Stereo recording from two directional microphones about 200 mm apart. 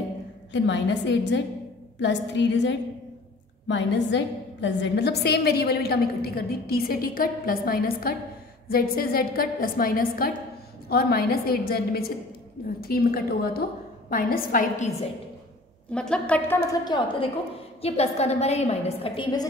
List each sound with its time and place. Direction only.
0.5 s a woman's voice: 60° left (ahead or behind); by 15.0 s 40° left (ahead or behind)
15.9 s a woman's voice: 5° left (ahead or behind); by 19.4 s 25° left (ahead or behind)